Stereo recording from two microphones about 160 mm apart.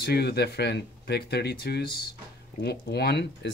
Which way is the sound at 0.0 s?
90° left.